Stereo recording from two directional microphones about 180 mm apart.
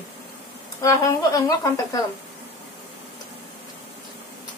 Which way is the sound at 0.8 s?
15° left (ahead or behind).